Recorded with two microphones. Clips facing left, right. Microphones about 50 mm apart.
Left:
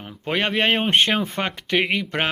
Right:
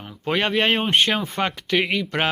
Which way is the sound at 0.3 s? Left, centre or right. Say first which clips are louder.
Even; centre.